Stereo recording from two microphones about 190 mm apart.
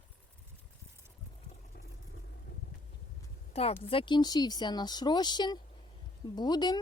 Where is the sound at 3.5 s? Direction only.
30° left (ahead or behind).